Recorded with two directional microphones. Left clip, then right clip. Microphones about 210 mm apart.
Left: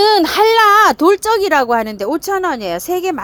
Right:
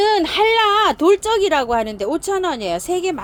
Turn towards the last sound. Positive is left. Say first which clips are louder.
# left 2 dB
turn(degrees=25)  # may be behind; listen again after turning